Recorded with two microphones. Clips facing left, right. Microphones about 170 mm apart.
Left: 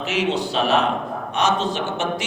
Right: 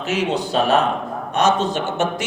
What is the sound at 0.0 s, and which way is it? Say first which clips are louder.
A man's voice: right 1 dB; 40° right (ahead or behind).